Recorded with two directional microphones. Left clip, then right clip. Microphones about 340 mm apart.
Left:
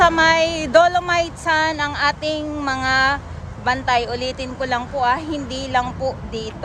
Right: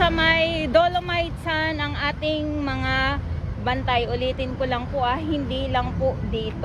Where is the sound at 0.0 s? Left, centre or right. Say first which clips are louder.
Left 5 dB; left.